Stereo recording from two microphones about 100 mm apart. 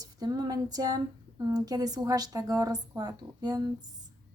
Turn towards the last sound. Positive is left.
turn(degrees=-40)  # may be behind; listen again after turning